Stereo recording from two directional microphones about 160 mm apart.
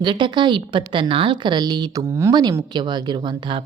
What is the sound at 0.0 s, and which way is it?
A woman's voice, 30° right (ahead or behind).